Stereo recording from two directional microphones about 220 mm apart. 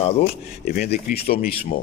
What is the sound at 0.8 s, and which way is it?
Speech, 45° left (ahead or behind).